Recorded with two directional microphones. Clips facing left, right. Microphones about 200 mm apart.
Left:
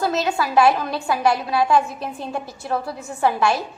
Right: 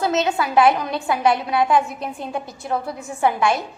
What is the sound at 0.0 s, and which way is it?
A woman's voice, 20° right (ahead or behind).